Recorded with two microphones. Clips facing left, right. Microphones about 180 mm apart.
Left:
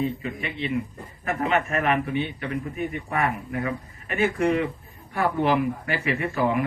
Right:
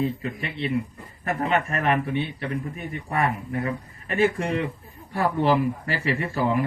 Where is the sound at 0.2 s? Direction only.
40° right (ahead or behind).